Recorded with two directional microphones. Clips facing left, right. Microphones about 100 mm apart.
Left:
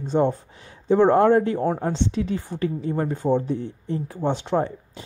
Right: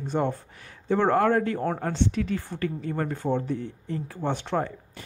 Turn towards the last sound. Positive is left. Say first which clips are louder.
# left 5 dB
turn(degrees=20)  # may be behind; listen again after turning